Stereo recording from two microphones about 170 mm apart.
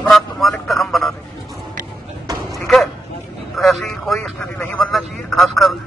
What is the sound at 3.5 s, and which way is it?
A man's voice, centre (ahead or behind).